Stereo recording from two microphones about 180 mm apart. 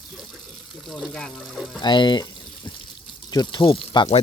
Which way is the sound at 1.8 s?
25° left (ahead or behind).